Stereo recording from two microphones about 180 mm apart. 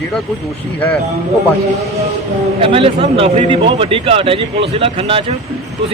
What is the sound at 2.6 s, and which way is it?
A man's voice, 30° right (ahead or behind).